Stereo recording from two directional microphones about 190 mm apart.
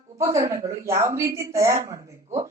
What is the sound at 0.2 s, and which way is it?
A woman's voice, 15° right (ahead or behind).